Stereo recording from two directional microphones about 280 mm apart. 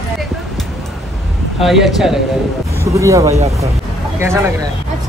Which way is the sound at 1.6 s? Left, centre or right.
Centre.